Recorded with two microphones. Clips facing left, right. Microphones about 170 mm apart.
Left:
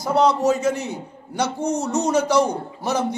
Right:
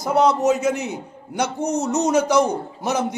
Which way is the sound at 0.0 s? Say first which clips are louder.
Even; 5° right (ahead or behind).